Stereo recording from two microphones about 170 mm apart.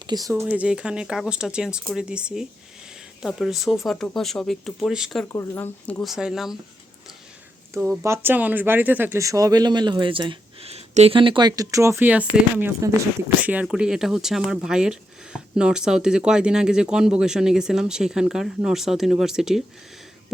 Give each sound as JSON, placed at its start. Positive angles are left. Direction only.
{"t": 0.1, "sound": "speech", "side_deg": -20}
{"t": 0.4, "sound": "speech", "side_deg": -10}
{"t": 5.3, "sound": "speech", "side_deg": 15}
{"t": 8.0, "sound": "speech", "side_deg": -15}